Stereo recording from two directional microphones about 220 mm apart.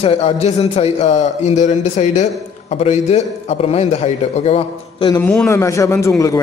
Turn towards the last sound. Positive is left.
turn(degrees=15)  # may be behind; listen again after turning